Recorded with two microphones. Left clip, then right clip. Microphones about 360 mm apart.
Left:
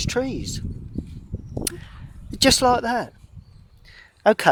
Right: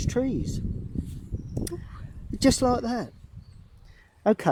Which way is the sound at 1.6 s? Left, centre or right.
Left.